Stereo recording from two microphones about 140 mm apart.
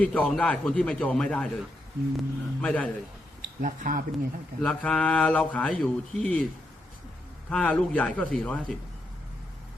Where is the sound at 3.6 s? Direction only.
70° right (ahead or behind).